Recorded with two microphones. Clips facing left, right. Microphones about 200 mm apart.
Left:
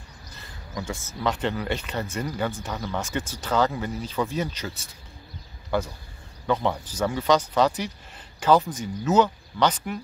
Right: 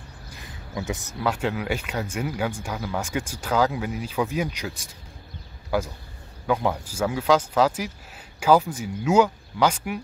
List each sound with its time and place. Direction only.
0.8 s speech: 20° right (ahead or behind)
1.2 s speech: 10° right (ahead or behind)
5.7 s speech: 10° right (ahead or behind)